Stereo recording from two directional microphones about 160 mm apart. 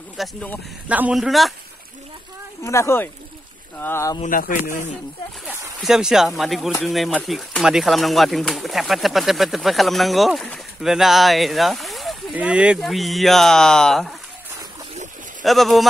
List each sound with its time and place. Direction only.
0.2 s speech: 5° left (ahead or behind)
0.8 s speech: 10° right (ahead or behind)
2.6 s speech: 15° left (ahead or behind)
4.3 s speech: 55° left (ahead or behind)
5.9 s speech: 5° right (ahead or behind)
15.4 s speech: centre (ahead or behind)